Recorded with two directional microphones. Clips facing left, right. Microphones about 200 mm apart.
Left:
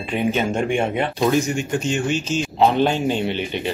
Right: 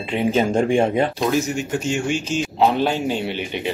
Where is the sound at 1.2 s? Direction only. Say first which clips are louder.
Left 2 dB; centre (ahead or behind).